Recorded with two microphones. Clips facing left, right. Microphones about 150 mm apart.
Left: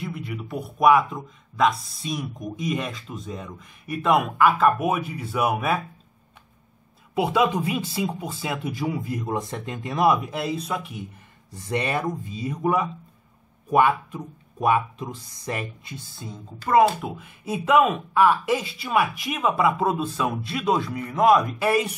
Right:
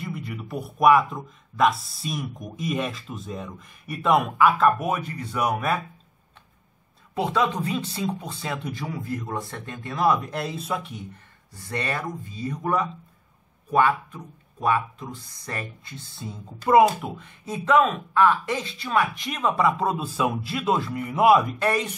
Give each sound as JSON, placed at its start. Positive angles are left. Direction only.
{"t": 0.0, "sound": "a man's voice", "side_deg": 0}
{"t": 7.2, "sound": "speech", "side_deg": 10}
{"t": 11.5, "sound": "speech", "side_deg": 20}
{"t": 16.2, "sound": "a man's voice", "side_deg": 0}
{"t": 16.7, "sound": "speech", "side_deg": -10}
{"t": 17.0, "sound": "a man's voice", "side_deg": 5}
{"t": 21.5, "sound": "speech", "side_deg": 5}